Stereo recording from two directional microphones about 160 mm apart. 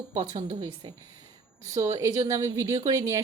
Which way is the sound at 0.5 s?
25° right (ahead or behind).